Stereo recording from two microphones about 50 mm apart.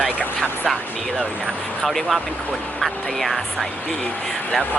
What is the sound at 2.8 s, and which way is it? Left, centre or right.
Speech, centre.